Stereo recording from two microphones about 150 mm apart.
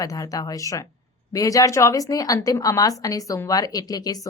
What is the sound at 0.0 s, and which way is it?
Speech, 25° left (ahead or behind).